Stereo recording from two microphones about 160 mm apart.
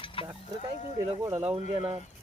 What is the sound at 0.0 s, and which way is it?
Mechanisms, 35° left (ahead or behind).